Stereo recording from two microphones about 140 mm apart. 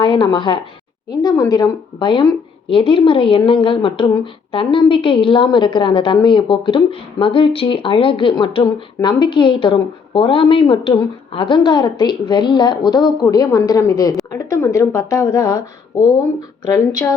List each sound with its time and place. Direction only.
0.0 s a woman's voice: 35° left (ahead or behind)